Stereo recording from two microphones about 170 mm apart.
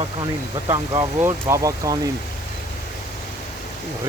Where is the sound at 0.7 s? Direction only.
20° right (ahead or behind).